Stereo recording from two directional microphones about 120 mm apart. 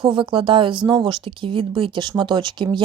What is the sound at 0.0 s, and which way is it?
A woman's voice, 45° right (ahead or behind).